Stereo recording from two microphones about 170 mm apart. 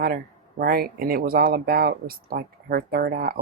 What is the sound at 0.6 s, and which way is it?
Speech, 60° right (ahead or behind).